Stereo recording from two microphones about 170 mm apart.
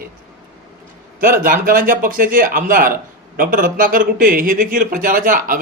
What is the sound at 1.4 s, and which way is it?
A man's voice, 55° right (ahead or behind).